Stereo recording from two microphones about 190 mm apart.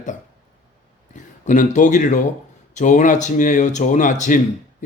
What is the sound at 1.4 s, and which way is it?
A man's voice, 40° left (ahead or behind).